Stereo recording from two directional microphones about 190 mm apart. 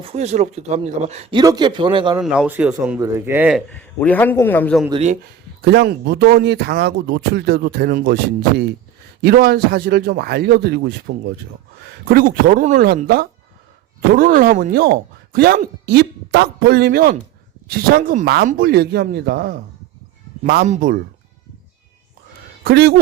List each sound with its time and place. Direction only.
0.0 s speech: 35° right (ahead or behind)
1.4 s a man's voice: 20° right (ahead or behind)
2.1 s speech: 5° right (ahead or behind)
3.7 s a man's voice: 10° left (ahead or behind)
4.9 s speech: 30° right (ahead or behind)
5.6 s speech: 60° right (ahead or behind)
12.0 s speech: 50° right (ahead or behind)
22.6 s speech: 55° right (ahead or behind)